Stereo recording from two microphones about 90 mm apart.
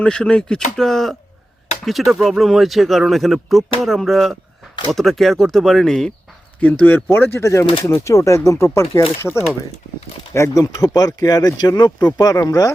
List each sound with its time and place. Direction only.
0.0 s speech: 10° left (ahead or behind)
6.6 s speech: 20° left (ahead or behind); by 8.8 s 35° left (ahead or behind)
9.2 s speech: 10° left (ahead or behind)
10.3 s speech: 30° left (ahead or behind)
10.6 s speech: 45° left (ahead or behind)